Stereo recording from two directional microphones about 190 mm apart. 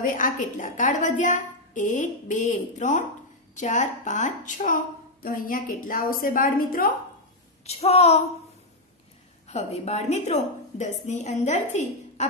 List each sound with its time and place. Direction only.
0.0 s a woman's voice: 45° left (ahead or behind)
7.6 s a woman's voice: 35° left (ahead or behind)
9.5 s a woman's voice: 35° left (ahead or behind)